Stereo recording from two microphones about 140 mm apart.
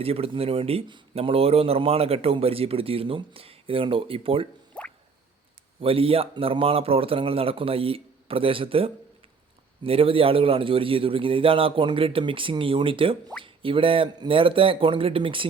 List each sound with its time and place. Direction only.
0.0 s a man's voice: 45° right (ahead or behind)
4.7 s drip: 5° left (ahead or behind)
5.8 s a man's voice: 40° right (ahead or behind)